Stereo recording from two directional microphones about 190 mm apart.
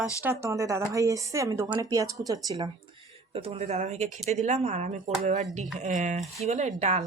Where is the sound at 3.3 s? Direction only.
30° right (ahead or behind).